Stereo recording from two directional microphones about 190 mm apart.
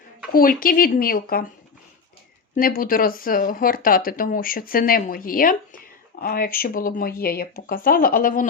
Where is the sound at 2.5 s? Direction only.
45° left (ahead or behind).